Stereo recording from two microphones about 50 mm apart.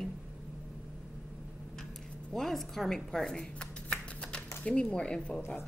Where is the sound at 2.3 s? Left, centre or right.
Centre.